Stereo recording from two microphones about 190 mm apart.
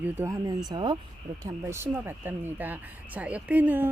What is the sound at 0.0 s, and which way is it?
Speech, 15° right (ahead or behind).